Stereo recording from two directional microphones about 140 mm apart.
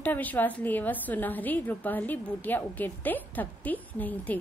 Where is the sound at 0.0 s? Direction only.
10° left (ahead or behind).